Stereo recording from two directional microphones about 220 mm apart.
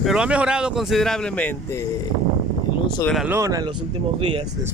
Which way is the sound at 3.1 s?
10° right (ahead or behind).